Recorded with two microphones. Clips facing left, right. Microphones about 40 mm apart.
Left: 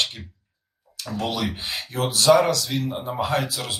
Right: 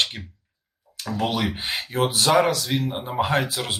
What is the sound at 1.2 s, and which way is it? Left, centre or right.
Speech, right.